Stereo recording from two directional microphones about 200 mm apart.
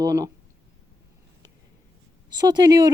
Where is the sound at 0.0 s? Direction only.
15° right (ahead or behind).